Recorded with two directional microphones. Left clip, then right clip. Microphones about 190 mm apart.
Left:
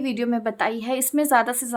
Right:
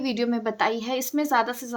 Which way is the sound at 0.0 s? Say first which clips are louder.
Left 1 dB; 15° left (ahead or behind).